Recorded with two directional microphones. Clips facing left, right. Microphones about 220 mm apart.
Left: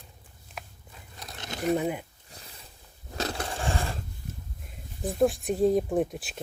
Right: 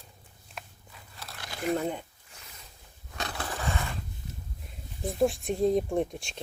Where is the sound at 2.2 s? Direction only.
35° left (ahead or behind).